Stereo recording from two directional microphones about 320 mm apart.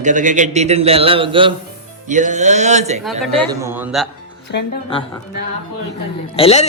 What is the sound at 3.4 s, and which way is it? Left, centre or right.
Speech, centre.